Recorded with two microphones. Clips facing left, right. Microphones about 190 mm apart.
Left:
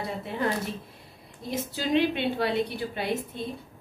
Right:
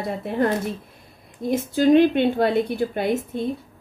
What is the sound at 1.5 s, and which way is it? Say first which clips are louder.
A woman's voice: right 11 dB; 50° right (ahead or behind).